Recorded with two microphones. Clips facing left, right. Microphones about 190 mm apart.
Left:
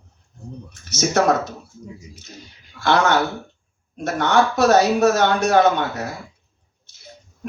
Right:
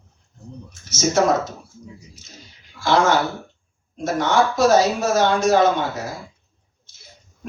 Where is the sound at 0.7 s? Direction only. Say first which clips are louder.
Even; 65° left (ahead or behind).